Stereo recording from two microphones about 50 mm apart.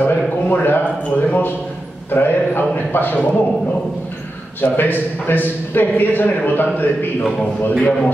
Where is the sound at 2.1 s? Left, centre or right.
Left.